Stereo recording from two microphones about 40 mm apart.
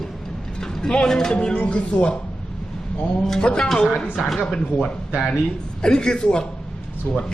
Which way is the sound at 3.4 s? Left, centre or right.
Left.